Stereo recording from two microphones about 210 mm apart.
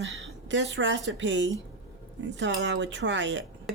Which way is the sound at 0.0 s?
65° right (ahead or behind).